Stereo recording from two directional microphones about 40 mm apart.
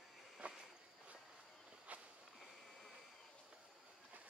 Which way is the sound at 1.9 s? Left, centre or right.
Right.